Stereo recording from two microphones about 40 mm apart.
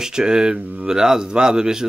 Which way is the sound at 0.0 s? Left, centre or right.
Centre.